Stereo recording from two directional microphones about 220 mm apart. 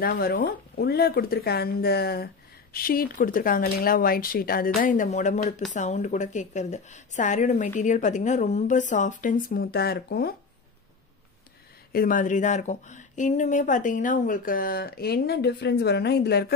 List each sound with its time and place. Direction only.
0.0 s speech: 45° left (ahead or behind)
11.9 s speech: 40° left (ahead or behind)